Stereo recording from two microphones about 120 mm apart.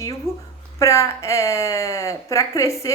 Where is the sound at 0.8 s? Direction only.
25° left (ahead or behind).